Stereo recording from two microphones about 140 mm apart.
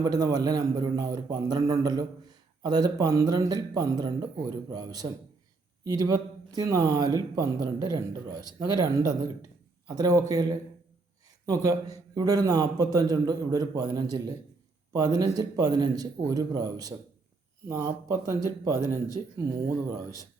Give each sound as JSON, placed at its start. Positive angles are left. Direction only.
{"t": 0.0, "sound": "speech", "side_deg": -25}